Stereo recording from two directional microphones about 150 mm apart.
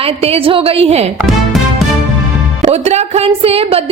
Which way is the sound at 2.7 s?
45° right (ahead or behind).